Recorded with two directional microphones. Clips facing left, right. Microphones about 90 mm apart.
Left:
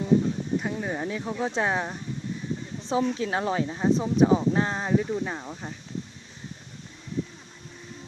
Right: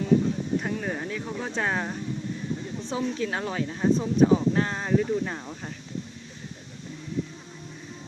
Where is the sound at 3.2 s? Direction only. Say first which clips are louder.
Left 2 dB; 25° left (ahead or behind); by 5.7 s 10° left (ahead or behind).